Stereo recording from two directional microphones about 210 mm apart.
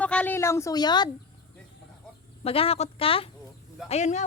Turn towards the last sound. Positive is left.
turn(degrees=35)  # may be behind; listen again after turning